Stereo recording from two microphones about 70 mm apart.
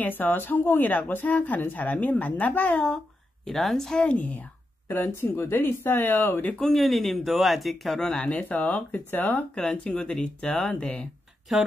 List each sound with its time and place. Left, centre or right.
0.0 s speech: left
3.4 s speech: centre; by 6.5 s left
6.6 s speech: centre
11.5 s speech: centre